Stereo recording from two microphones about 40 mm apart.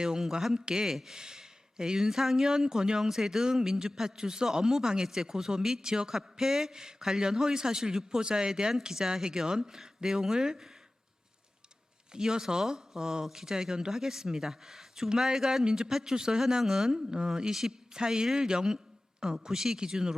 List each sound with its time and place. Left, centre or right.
0.2 s speech: centre
12.1 s speech: centre